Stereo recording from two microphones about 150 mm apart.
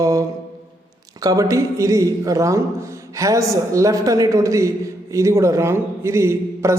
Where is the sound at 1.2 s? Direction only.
25° right (ahead or behind).